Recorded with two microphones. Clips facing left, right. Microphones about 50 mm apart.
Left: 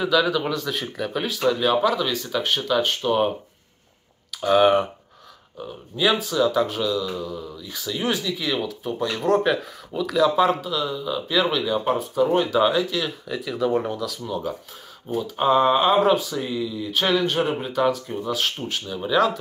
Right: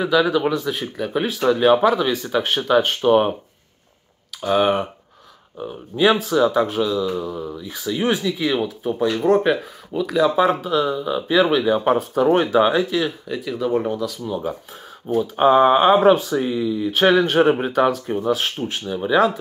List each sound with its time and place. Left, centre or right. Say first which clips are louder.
0.0 s speech: right 3 dB; right
0.7 s speech: right 3 dB; centre
1.1 s speech: right 4 dB; right
4.4 s speech: left 1 dB; centre
5.6 s speech: right 5 dB; right
7.2 s speech: right 5 dB; right
9.1 s speech: right 2 dB; centre
10.6 s speech: right 6 dB; right
12.5 s speech: right 3 dB; right
13.3 s speech: left 1 dB; centre
15.3 s speech: right 4 dB; right